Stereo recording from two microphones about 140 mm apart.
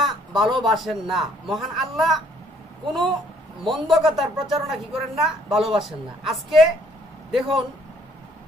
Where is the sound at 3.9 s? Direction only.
Centre (ahead or behind).